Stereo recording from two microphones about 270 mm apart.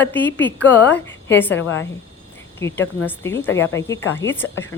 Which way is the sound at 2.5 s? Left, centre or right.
Centre.